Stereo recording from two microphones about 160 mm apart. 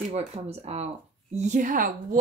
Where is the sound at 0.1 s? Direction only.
40° right (ahead or behind).